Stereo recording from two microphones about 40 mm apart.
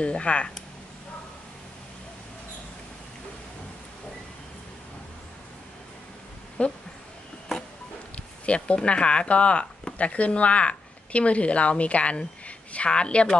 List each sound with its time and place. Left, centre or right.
0.0 s speech: left
6.6 s speech: left
8.5 s a woman's voice: left